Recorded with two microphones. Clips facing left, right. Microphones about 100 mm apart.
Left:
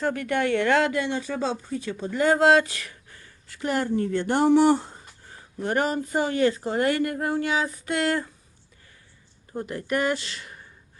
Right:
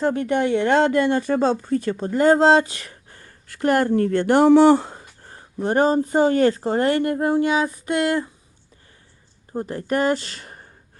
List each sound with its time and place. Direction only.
0.0 s speech: 25° right (ahead or behind)
0.9 s speech: 50° right (ahead or behind); by 5.0 s 85° right
5.5 s speech: 30° right (ahead or behind)
6.3 s speech: 40° right (ahead or behind); by 8.3 s 20° right (ahead or behind)
9.5 s speech: 30° right (ahead or behind)